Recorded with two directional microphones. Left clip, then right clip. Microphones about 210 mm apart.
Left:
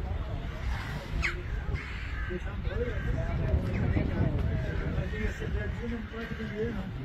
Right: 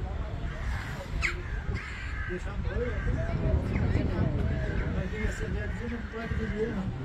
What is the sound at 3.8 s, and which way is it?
Vehicle, centre (ahead or behind).